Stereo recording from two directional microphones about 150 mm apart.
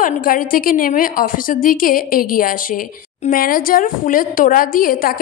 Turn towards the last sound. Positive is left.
turn(degrees=70)  # may be behind; listen again after turning